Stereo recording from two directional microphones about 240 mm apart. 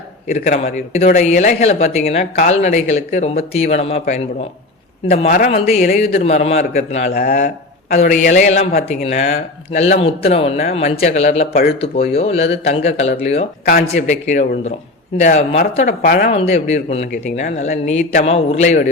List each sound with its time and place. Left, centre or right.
0.3 s speech: left